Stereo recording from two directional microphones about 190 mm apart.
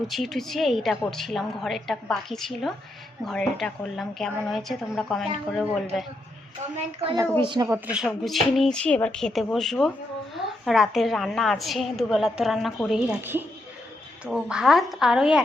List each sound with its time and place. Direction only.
0.1 s a woman's voice: centre (ahead or behind)
6.7 s a woman's voice: 30° right (ahead or behind)
7.7 s a woman's voice: 5° right (ahead or behind)